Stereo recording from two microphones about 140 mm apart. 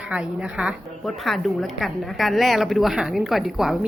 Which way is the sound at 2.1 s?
Centre (ahead or behind).